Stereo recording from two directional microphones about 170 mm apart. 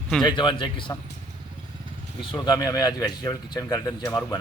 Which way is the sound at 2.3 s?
25° left (ahead or behind).